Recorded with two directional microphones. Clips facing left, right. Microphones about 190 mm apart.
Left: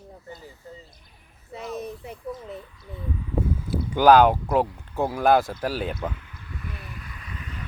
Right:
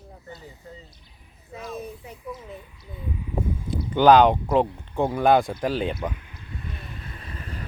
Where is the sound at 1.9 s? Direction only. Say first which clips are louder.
Left 3 dB; 10° right (ahead or behind).